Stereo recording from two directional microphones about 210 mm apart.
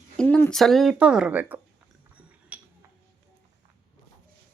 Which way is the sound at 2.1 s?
5° right (ahead or behind).